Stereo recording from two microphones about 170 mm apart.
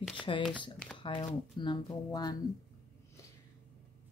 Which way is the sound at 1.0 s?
30° left (ahead or behind).